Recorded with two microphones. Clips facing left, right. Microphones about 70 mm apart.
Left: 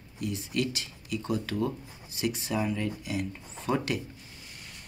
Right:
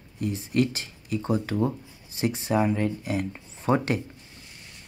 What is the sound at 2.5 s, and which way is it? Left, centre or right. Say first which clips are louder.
Speech: right 9 dB; right.